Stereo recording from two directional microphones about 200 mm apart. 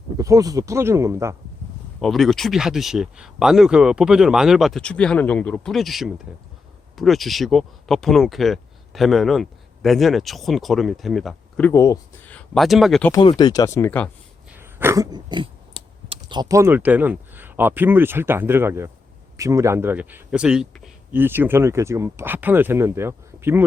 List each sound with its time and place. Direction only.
0.2 s speech: 15° right (ahead or behind)
2.0 s speech: centre (ahead or behind)
13.1 s speech: 20° left (ahead or behind)
14.6 s speech: 10° right (ahead or behind)